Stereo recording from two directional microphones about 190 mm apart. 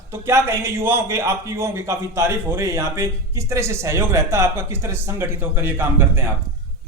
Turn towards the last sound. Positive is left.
turn(degrees=-10)  # may be behind; listen again after turning